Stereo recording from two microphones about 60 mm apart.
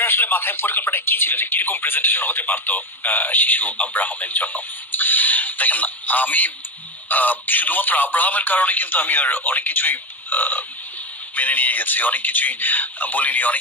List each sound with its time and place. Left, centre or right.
0.0 s speech: left